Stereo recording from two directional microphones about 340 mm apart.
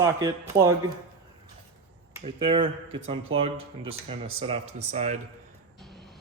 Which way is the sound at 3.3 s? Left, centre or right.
Right.